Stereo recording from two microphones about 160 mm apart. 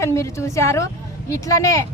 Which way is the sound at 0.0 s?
15° left (ahead or behind).